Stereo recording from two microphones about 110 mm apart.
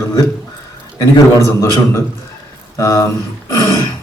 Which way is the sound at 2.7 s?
30° left (ahead or behind).